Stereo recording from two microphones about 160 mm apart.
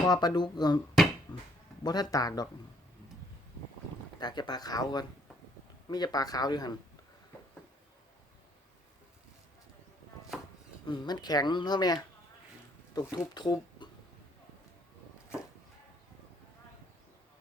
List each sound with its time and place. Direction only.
0.0 s speech: 25° left (ahead or behind)
1.0 s a sound: centre (ahead or behind)
1.8 s speech: 25° left (ahead or behind)
4.2 s speech: 25° left (ahead or behind)
10.8 s speech: 25° left (ahead or behind)